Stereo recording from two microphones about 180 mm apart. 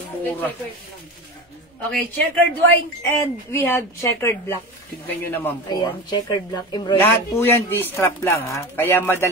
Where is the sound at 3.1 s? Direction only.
10° left (ahead or behind).